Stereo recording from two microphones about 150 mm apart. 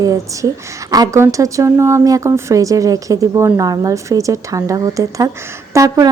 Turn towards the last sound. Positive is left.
turn(degrees=-25)  # may be behind; listen again after turning